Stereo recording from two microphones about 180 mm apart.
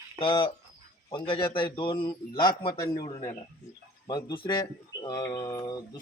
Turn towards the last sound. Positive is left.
turn(degrees=20)  # may be behind; listen again after turning